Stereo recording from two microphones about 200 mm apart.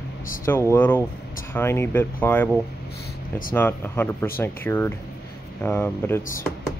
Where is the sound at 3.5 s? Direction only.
10° left (ahead or behind).